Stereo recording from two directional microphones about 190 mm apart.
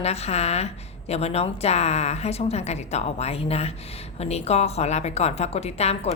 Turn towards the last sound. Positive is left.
turn(degrees=35)  # may be behind; listen again after turning